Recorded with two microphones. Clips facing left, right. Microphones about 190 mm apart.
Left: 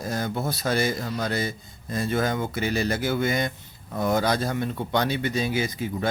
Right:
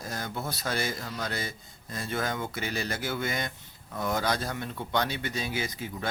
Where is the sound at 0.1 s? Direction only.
35° left (ahead or behind).